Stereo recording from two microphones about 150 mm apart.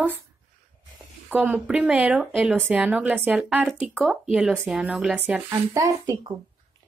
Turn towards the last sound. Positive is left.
turn(degrees=-25)  # may be behind; listen again after turning